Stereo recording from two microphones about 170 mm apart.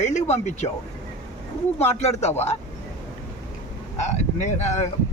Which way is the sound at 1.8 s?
40° left (ahead or behind).